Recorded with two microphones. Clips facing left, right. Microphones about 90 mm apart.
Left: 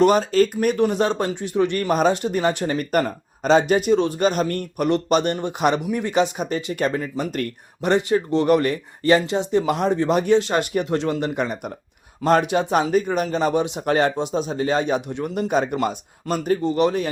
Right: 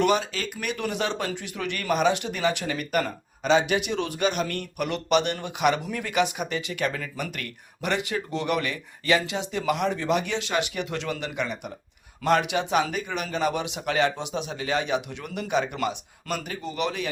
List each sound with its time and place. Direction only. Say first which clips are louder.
0.0 s speech: left 8 dB; 40° left (ahead or behind)